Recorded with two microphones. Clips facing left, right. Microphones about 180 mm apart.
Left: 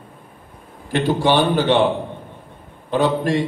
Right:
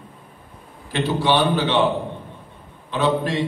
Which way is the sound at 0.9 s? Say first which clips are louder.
Left 3 dB; 45° left (ahead or behind).